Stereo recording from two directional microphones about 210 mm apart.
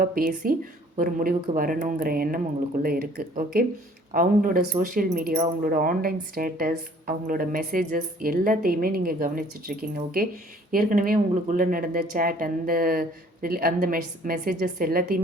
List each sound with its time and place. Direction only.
0.0 s speech: 45° right (ahead or behind)